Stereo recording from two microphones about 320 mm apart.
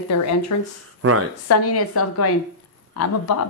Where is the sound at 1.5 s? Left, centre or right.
Left.